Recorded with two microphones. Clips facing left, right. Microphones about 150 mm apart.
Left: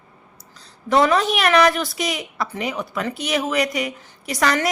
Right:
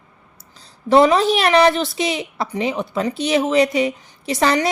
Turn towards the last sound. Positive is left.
turn(degrees=-30)  # may be behind; listen again after turning